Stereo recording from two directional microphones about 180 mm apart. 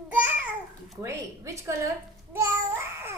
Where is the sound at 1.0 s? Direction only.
15° right (ahead or behind).